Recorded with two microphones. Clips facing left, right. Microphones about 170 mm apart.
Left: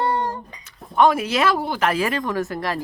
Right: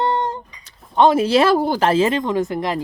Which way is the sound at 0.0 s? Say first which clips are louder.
Right 2 dB; 20° right (ahead or behind).